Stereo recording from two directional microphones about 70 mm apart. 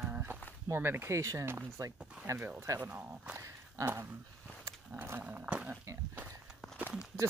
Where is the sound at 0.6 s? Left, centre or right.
Right.